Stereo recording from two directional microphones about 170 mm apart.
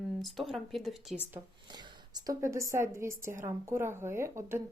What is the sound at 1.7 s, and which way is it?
A woman's voice, 25° right (ahead or behind).